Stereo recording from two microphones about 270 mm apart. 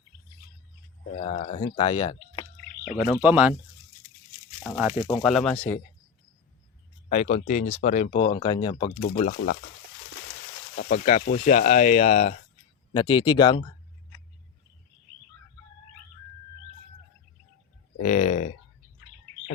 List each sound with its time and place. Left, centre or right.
1.1 s speech: left
3.2 s speech: centre
4.6 s speech: centre
7.1 s speech: left
10.8 s speech: left
17.9 s speech: left